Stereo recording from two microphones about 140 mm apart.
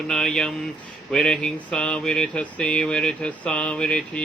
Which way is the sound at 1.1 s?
5° left (ahead or behind).